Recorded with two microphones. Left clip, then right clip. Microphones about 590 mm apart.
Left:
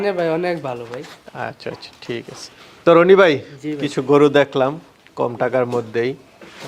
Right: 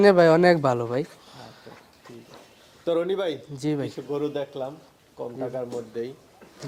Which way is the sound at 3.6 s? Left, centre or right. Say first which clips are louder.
Right 3 dB; right.